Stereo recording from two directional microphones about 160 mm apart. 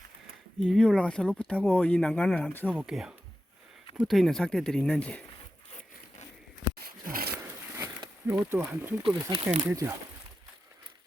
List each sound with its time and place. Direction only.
0.6 s speech: 5° left (ahead or behind)
2.7 s speech: 5° right (ahead or behind)
6.7 s a sound: 65° right (ahead or behind)
7.3 s a sound: 20° right (ahead or behind)
8.3 s speech: 15° right (ahead or behind)
9.0 s speech: 35° right (ahead or behind)
9.6 s speech: 15° right (ahead or behind)